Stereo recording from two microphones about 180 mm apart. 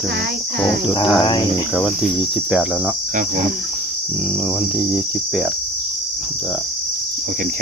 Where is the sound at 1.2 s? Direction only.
25° left (ahead or behind).